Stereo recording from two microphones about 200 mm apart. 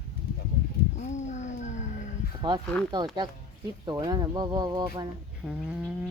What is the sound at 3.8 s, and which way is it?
Speech, 20° right (ahead or behind).